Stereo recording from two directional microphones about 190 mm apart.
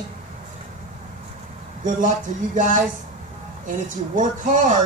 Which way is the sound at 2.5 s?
45° right (ahead or behind).